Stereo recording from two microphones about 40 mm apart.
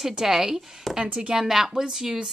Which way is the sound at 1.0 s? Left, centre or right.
Right.